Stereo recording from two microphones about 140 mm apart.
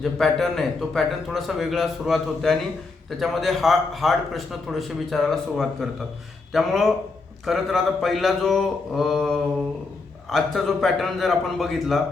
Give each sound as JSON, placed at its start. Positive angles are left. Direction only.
{"t": 0.0, "sound": "speech", "side_deg": 0}